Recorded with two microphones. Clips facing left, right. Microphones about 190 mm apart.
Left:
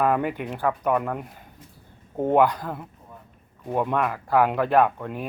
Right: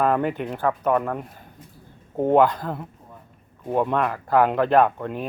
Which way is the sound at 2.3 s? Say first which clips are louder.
Right 2 dB; 15° left (ahead or behind).